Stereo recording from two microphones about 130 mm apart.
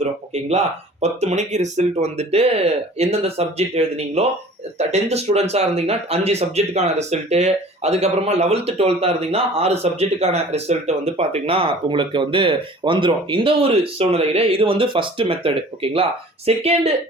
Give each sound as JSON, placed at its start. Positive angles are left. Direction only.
{"t": 0.0, "sound": "speech", "side_deg": -60}